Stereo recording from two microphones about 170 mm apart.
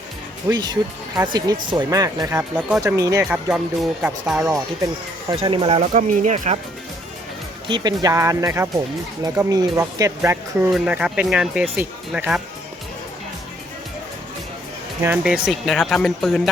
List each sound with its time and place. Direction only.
0.4 s speech: 25° right (ahead or behind); by 2.8 s 5° right (ahead or behind)
2.8 s speech: 20° right (ahead or behind)
3.2 s speech: centre (ahead or behind)
5.3 s speech: 35° right (ahead or behind)
5.8 s speech: 45° right (ahead or behind)
7.7 s speech: 25° right (ahead or behind)
10.7 s speech: 5° right (ahead or behind)
15.0 s speech: 5° right (ahead or behind)